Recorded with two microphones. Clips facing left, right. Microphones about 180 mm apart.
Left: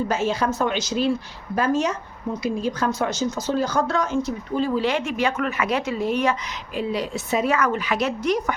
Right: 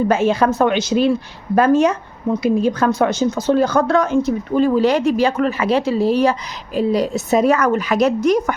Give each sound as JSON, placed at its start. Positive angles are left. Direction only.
{"t": 0.1, "sound": "a woman's voice", "side_deg": -55}